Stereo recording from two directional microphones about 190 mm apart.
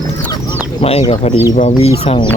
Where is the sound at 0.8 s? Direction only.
30° left (ahead or behind).